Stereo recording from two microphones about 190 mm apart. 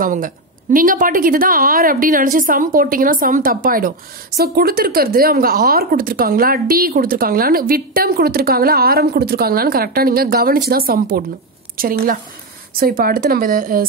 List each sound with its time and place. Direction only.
0.0 s speech: 45° right (ahead or behind)